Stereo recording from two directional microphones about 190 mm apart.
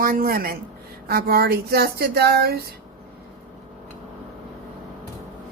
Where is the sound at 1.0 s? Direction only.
55° right (ahead or behind).